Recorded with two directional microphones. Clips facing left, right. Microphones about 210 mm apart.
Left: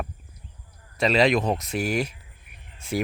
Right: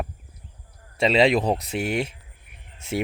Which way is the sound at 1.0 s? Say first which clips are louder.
Right 2 dB; 25° right (ahead or behind).